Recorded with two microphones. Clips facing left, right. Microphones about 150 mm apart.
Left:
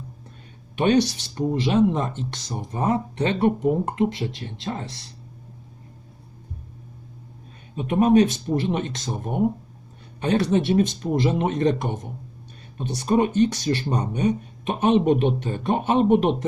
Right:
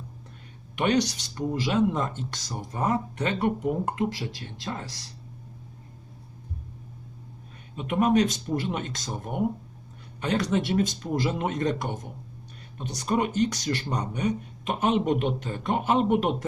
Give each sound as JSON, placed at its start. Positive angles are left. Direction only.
{"t": 0.8, "sound": "speech", "side_deg": 30}
{"t": 7.8, "sound": "speech", "side_deg": 25}